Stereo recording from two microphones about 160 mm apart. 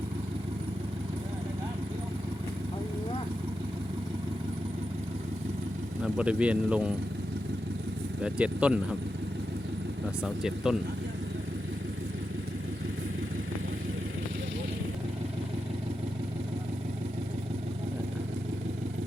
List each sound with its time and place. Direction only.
6.1 s speech: 5° right (ahead or behind)
8.2 s speech: 5° right (ahead or behind)
10.2 s speech: 5° right (ahead or behind)